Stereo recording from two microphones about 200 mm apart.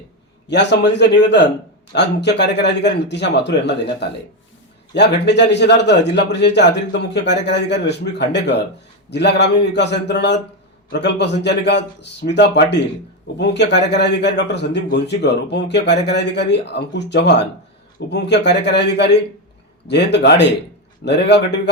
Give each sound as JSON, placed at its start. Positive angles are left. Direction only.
{"t": 0.4, "sound": "a man's voice", "side_deg": 60}